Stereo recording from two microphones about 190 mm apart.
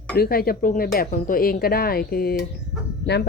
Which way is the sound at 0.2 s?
55° left (ahead or behind).